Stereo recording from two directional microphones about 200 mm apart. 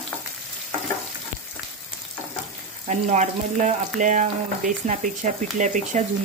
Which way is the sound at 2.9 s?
35° right (ahead or behind).